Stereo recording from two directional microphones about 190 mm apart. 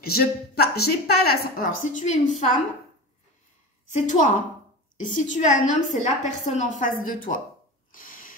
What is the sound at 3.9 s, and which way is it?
Speech, 40° left (ahead or behind).